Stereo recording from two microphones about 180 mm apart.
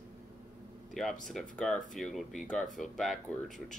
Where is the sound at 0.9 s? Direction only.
Centre (ahead or behind).